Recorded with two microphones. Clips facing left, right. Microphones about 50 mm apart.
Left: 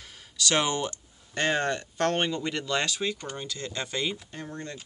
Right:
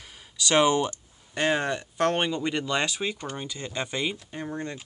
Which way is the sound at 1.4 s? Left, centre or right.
Centre.